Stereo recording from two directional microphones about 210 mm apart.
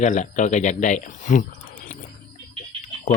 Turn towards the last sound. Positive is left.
turn(degrees=35)  # may be behind; listen again after turning